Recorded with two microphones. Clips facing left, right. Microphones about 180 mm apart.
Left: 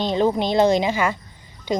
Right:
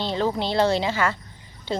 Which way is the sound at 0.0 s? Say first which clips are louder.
Left 5 dB; 15° left (ahead or behind).